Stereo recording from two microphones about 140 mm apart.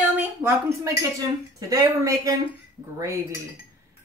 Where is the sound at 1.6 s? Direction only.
25° right (ahead or behind).